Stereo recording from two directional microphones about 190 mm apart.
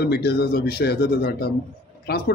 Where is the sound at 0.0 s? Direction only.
60° left (ahead or behind).